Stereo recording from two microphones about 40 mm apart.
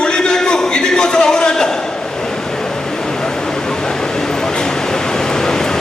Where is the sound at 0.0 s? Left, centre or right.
Centre.